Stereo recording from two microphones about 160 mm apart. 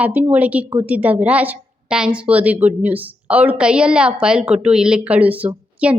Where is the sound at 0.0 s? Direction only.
10° right (ahead or behind).